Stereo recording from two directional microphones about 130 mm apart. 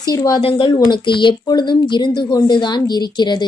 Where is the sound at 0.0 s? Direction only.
30° left (ahead or behind).